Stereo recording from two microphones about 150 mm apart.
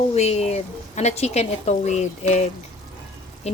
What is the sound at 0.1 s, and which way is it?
A woman's voice, 45° left (ahead or behind).